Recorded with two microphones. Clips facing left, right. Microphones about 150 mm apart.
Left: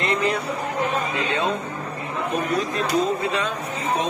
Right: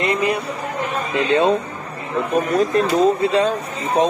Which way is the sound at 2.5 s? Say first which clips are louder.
Right 6 dB; 40° right (ahead or behind).